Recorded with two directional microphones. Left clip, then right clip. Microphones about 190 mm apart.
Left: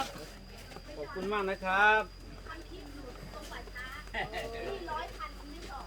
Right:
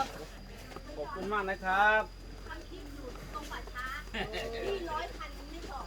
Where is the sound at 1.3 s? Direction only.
60° left (ahead or behind).